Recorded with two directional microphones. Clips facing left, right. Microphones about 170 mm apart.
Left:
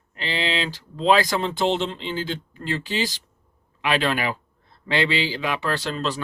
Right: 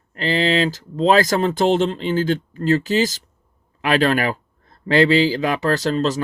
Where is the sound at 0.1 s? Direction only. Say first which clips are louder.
Right 8 dB; 45° right (ahead or behind).